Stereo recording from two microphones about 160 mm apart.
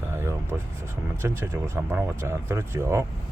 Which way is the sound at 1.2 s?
15° right (ahead or behind).